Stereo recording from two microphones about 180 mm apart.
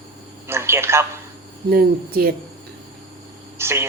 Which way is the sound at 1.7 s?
60° right (ahead or behind).